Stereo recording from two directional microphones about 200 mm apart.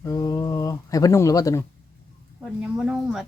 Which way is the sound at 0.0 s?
15° left (ahead or behind).